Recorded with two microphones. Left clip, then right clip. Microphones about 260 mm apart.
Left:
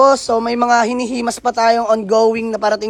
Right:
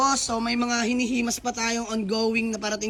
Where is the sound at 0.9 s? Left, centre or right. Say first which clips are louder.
Left 7 dB; centre.